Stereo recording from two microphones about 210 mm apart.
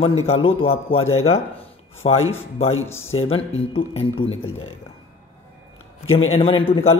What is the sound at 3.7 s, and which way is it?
Speech, 25° left (ahead or behind).